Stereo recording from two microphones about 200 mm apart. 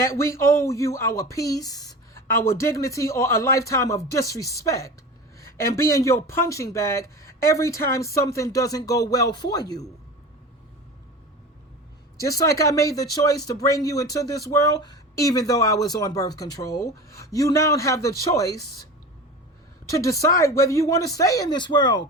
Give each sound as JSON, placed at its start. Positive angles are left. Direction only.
{"t": 0.0, "sound": "speech", "side_deg": 15}
{"t": 12.1, "sound": "speech", "side_deg": 15}
{"t": 19.9, "sound": "speech", "side_deg": 15}